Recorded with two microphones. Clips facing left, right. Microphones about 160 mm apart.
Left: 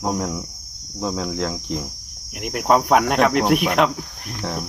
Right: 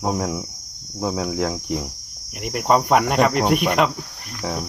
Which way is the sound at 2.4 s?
Centre (ahead or behind).